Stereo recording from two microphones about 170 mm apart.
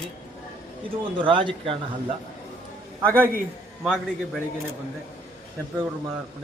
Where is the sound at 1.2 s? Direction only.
30° right (ahead or behind).